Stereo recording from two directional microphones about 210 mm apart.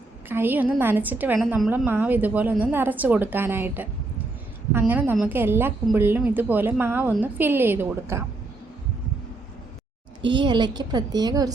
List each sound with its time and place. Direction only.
0.3 s a woman's voice: 10° right (ahead or behind)
10.3 s a woman's voice: 20° right (ahead or behind)